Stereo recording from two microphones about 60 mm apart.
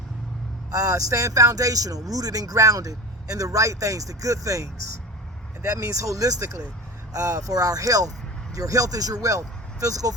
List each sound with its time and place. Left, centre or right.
0.7 s speech: right
7.1 s speech: right
8.5 s speech: right